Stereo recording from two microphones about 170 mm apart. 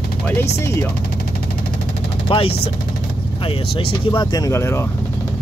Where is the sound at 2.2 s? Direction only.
35° left (ahead or behind).